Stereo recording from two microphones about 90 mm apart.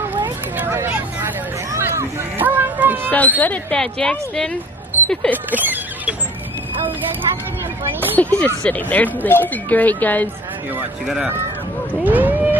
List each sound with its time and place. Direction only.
0.6 s vehicle: 25° right (ahead or behind)
1.7 s a sound: 30° right (ahead or behind)
3.1 s speech: 15° left (ahead or behind)
3.7 s speech: 10° left (ahead or behind)
4.9 s a sound: 25° right (ahead or behind)
5.3 s music: 20° right (ahead or behind)
8.0 s speech: 15° left (ahead or behind)
12.0 s speech: 20° right (ahead or behind)